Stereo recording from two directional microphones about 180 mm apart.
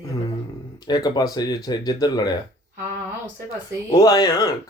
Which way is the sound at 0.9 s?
20° left (ahead or behind).